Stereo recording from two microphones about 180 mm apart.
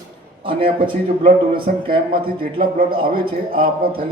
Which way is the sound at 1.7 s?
45° right (ahead or behind).